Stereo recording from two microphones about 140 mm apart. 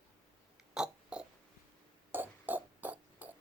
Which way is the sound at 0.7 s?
5° right (ahead or behind).